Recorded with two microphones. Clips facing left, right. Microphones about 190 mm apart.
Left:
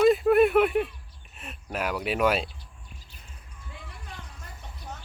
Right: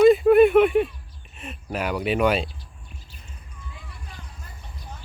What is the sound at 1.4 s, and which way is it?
Speech, centre (ahead or behind).